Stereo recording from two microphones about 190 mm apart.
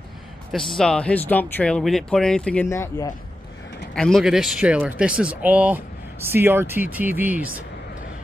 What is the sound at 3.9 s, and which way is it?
Speech, 5° left (ahead or behind).